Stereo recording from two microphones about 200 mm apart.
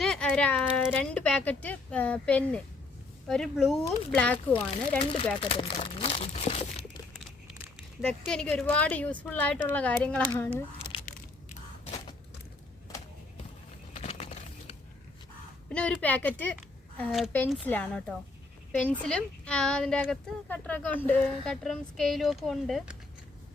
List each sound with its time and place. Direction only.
0.0 s a sound: 5° left (ahead or behind)
0.9 s a woman's voice: 5° left (ahead or behind)
4.9 s speech: 30° left (ahead or behind)
8.0 s a woman's voice: 5° left (ahead or behind)
13.9 s a sound: 30° left (ahead or behind)
15.7 s a woman's voice: 5° left (ahead or behind)